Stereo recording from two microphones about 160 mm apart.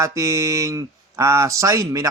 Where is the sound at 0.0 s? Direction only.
20° right (ahead or behind).